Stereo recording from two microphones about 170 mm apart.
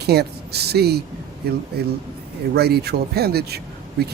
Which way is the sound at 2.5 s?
70° right (ahead or behind).